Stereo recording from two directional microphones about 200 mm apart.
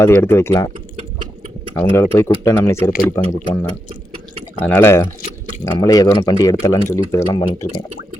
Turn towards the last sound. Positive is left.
turn(degrees=20)  # may be behind; listen again after turning